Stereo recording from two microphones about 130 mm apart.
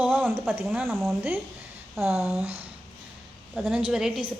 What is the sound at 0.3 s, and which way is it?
Speech, 15° right (ahead or behind).